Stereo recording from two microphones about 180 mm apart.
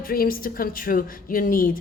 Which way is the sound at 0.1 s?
55° left (ahead or behind).